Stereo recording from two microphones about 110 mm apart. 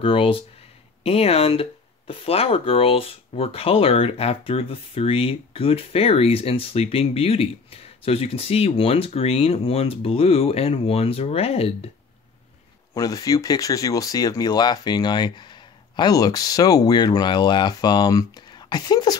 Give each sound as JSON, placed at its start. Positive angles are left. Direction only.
{"t": 0.0, "sound": "speech", "side_deg": 55}
{"t": 1.0, "sound": "speech", "side_deg": 65}
{"t": 12.9, "sound": "speech", "side_deg": 35}